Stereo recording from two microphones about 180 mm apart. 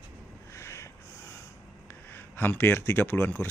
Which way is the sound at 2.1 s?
10° left (ahead or behind).